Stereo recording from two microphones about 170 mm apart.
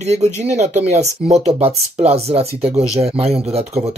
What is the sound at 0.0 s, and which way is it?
Speech, 40° right (ahead or behind).